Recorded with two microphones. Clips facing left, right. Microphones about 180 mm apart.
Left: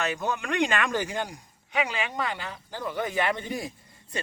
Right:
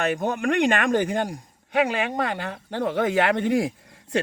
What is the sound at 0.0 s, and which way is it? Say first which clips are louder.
A man's voice: right 6 dB; 50° right (ahead or behind).